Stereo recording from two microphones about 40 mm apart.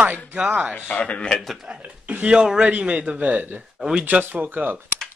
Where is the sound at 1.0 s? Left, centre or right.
Left.